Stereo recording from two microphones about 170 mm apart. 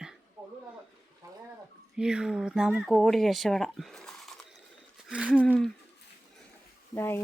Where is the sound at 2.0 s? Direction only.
5° right (ahead or behind).